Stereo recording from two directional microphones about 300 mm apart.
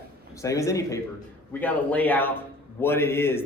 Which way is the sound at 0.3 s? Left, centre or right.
Centre.